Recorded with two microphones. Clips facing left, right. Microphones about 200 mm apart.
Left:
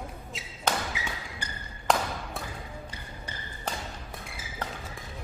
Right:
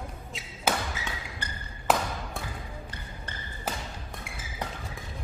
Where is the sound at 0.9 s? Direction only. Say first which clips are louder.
Even; 10° left (ahead or behind).